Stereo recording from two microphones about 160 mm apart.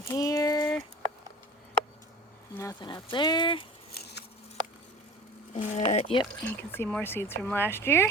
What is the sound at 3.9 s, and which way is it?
Patter, 90° left.